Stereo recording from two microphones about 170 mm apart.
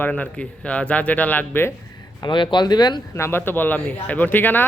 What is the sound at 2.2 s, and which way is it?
Speech, 30° left (ahead or behind).